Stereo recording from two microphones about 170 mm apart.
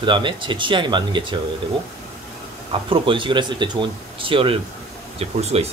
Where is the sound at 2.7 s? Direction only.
30° right (ahead or behind).